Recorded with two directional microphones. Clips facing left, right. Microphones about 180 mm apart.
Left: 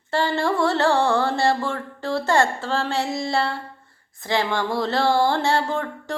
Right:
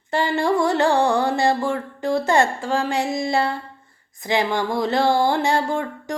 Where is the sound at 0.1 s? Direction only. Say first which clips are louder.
Right 2 dB; 15° right (ahead or behind).